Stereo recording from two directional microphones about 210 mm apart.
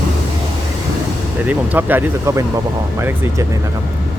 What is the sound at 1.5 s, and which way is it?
Speech, 10° right (ahead or behind).